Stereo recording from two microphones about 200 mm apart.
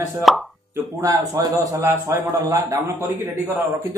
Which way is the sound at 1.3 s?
15° right (ahead or behind).